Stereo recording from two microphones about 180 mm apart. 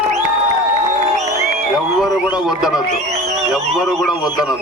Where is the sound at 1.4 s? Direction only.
Centre (ahead or behind).